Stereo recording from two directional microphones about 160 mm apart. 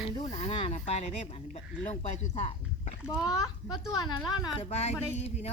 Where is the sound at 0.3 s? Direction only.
45° left (ahead or behind).